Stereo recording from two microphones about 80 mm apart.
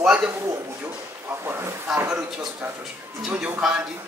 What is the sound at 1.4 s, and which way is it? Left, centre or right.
Speech, right.